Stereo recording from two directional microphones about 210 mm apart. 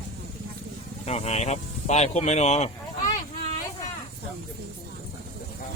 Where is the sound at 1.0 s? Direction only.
30° left (ahead or behind).